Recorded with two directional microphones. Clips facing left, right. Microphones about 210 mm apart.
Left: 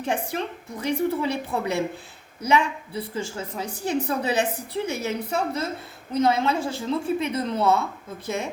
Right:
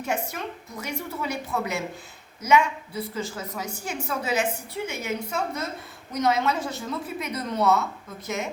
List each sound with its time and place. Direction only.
0.0 s a woman's voice: 30° left (ahead or behind)